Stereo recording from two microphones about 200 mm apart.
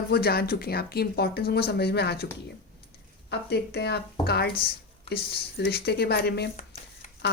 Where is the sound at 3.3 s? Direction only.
55° left (ahead or behind).